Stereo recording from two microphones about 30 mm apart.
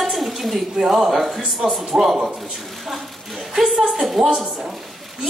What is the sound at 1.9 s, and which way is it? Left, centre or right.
Speech, centre.